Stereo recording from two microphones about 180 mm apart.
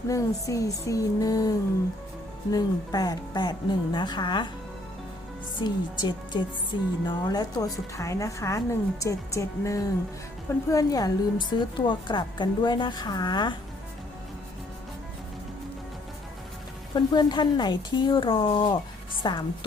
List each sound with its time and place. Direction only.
0.1 s a woman's voice: 20° left (ahead or behind)
5.5 s a woman's voice: 25° left (ahead or behind)
16.9 s a woman's voice: 25° left (ahead or behind)